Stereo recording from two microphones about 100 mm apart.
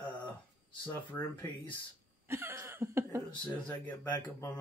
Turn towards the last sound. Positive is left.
turn(degrees=15)  # may be behind; listen again after turning